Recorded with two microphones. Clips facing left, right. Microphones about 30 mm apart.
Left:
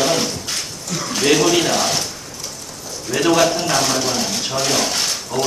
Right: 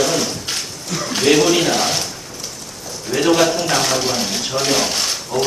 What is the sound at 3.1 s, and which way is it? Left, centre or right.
A man's voice, centre.